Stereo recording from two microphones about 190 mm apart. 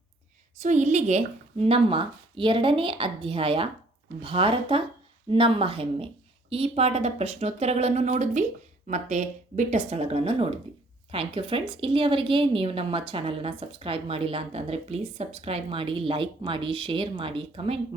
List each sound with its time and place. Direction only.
0.6 s a woman's voice: 40° right (ahead or behind)